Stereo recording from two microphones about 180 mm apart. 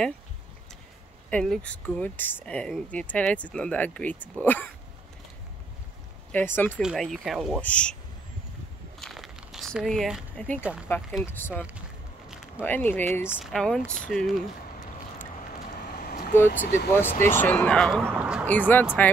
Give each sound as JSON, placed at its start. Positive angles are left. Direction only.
{"t": 1.3, "sound": "speech", "side_deg": 5}
{"t": 6.3, "sound": "speech", "side_deg": 10}
{"t": 6.8, "sound": "speech", "side_deg": 0}
{"t": 9.0, "sound": "a sound", "side_deg": 0}
{"t": 11.5, "sound": "speech", "side_deg": -5}
{"t": 12.3, "sound": "a sound", "side_deg": -5}
{"t": 12.6, "sound": "speech", "side_deg": 10}
{"t": 16.0, "sound": "vehicle", "side_deg": 50}
{"t": 16.4, "sound": "speech", "side_deg": 55}
{"t": 17.2, "sound": "speech", "side_deg": 10}
{"t": 18.0, "sound": "a man's voice", "side_deg": -10}
{"t": 18.5, "sound": "speech", "side_deg": 10}